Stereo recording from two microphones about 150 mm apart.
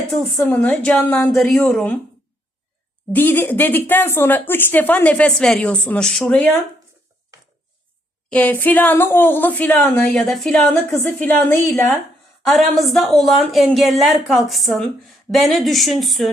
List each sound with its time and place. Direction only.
0.1 s a woman's voice: 5° left (ahead or behind)
3.1 s speech: 15° left (ahead or behind)
8.3 s a woman's voice: 10° left (ahead or behind)
11.0 s speech: 15° left (ahead or behind)
12.5 s a woman's voice: centre (ahead or behind)